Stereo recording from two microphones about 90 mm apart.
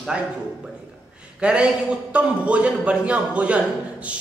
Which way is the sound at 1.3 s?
10° right (ahead or behind).